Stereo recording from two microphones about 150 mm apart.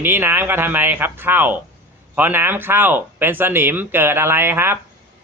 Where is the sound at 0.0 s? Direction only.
15° right (ahead or behind).